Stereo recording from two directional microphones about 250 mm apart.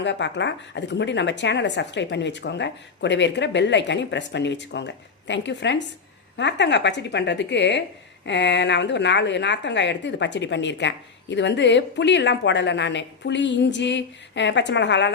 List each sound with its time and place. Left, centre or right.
0.0 s speech: left